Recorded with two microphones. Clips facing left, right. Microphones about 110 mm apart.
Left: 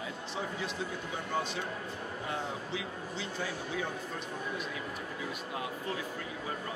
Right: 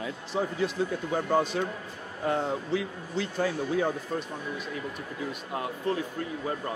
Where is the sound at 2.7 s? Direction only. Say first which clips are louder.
Right 8 dB; 50° right (ahead or behind).